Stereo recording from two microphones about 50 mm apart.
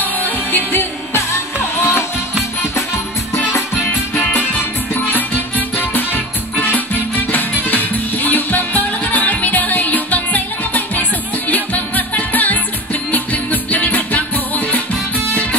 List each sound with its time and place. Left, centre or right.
0.0 s music: left
4.9 s music: left